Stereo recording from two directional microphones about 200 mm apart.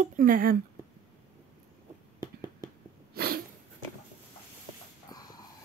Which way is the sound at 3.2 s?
50° right (ahead or behind).